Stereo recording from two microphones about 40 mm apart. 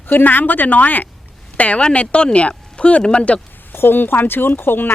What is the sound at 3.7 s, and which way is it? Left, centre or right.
Speech, left.